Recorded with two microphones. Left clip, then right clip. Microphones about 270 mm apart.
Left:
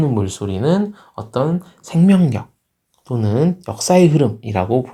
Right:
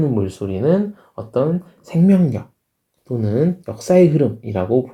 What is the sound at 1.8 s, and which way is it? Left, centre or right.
Speech, centre.